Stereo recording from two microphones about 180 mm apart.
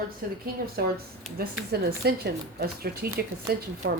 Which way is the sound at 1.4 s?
60° right (ahead or behind).